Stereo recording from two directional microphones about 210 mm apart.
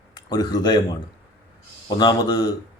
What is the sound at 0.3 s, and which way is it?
Speech, 20° left (ahead or behind).